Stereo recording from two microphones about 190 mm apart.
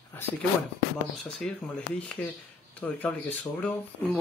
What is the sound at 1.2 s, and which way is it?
Speech, 5° left (ahead or behind).